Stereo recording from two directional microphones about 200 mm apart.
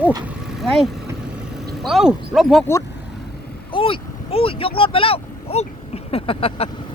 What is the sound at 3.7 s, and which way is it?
Vehicle, 25° left (ahead or behind).